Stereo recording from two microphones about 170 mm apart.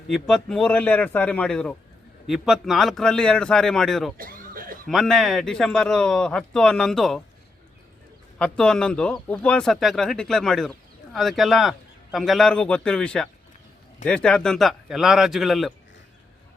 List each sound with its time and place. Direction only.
0.1 s speech: centre (ahead or behind)
4.2 s chuckle: 55° right (ahead or behind)
4.9 s speech: centre (ahead or behind)
8.4 s speech: 5° left (ahead or behind)